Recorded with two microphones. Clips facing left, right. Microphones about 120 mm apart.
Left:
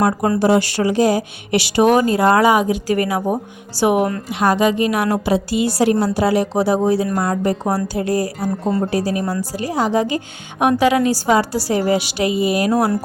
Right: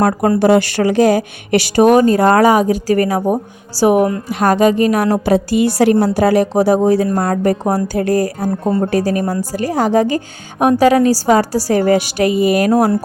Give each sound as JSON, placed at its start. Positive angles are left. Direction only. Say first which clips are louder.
{"t": 0.3, "sound": "a woman's voice", "louder": "right 4 dB", "side_deg": -55}